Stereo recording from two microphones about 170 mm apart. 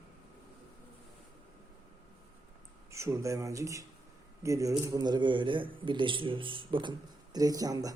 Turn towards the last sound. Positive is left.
turn(degrees=-20)  # may be behind; listen again after turning